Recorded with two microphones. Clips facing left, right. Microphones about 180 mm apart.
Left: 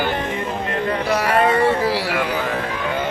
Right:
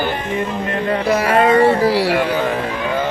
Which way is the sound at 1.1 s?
45° right (ahead or behind).